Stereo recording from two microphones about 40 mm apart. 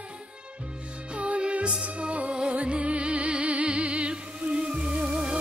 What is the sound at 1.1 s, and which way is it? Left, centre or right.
Music, right.